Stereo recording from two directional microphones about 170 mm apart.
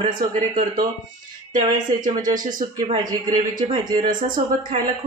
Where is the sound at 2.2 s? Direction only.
50° right (ahead or behind).